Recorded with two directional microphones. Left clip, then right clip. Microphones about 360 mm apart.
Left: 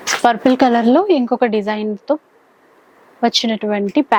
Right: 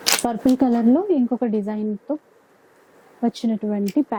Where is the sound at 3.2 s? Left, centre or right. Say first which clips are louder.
Left 9 dB; centre.